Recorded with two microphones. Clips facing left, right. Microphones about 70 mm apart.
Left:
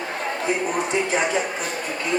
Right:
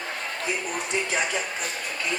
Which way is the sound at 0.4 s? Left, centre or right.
Left.